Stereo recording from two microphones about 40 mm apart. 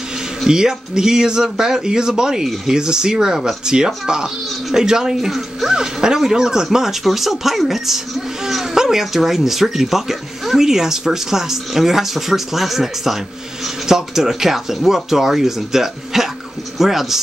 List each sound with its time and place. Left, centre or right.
0.5 s speech: centre